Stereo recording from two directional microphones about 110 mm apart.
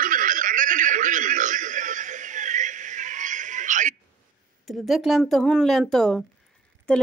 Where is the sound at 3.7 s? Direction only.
90° right.